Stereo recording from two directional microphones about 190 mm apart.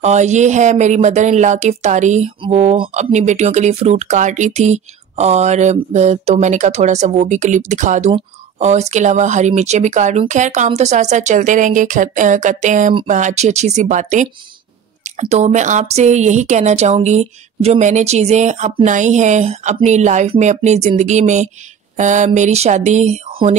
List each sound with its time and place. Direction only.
0.0 s speech: 35° right (ahead or behind)